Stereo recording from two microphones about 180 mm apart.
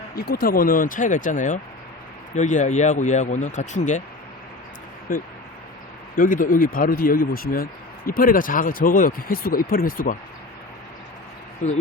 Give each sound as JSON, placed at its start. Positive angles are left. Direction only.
{"t": 0.2, "sound": "speech", "side_deg": 55}
{"t": 6.1, "sound": "speech", "side_deg": 50}
{"t": 11.6, "sound": "speech", "side_deg": 40}